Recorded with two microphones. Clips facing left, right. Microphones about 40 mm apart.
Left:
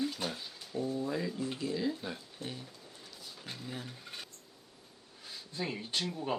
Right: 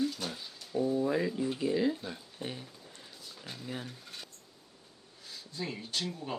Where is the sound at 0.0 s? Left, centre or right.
Centre.